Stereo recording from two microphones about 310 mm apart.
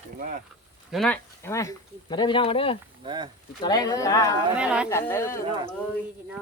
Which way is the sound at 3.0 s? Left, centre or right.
Centre.